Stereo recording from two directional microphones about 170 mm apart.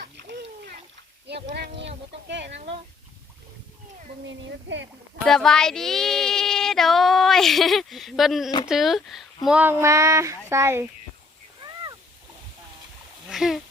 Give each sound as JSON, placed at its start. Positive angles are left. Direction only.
{"t": 1.5, "sound": "speech", "side_deg": -80}
{"t": 4.3, "sound": "speech", "side_deg": -90}
{"t": 5.2, "sound": "female singing", "side_deg": 5}
{"t": 10.5, "sound": "speech", "side_deg": -15}
{"t": 13.3, "sound": "speech", "side_deg": 0}